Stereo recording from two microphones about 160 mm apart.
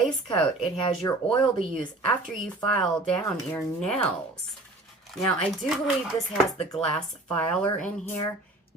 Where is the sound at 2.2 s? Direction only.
5° left (ahead or behind).